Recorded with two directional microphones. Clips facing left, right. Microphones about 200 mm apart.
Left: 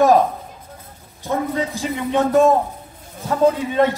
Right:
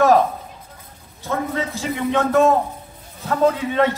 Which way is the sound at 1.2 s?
15° left (ahead or behind).